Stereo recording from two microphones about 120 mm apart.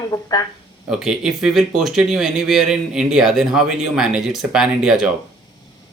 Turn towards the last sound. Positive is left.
turn(degrees=-5)  # may be behind; listen again after turning